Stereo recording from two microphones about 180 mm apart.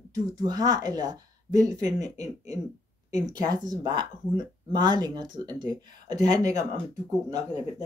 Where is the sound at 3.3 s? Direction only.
20° right (ahead or behind).